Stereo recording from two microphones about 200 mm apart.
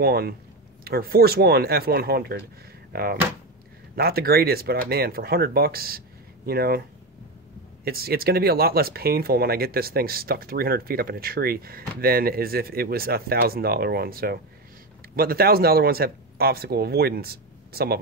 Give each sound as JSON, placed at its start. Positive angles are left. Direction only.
{"t": 0.0, "sound": "speech", "side_deg": -50}
{"t": 7.8, "sound": "speech", "side_deg": -50}